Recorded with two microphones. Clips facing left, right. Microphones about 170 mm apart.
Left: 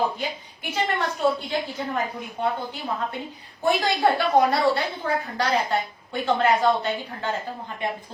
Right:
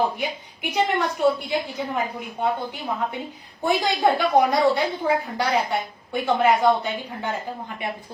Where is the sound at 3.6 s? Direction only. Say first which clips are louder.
Right 1 dB; 15° right (ahead or behind).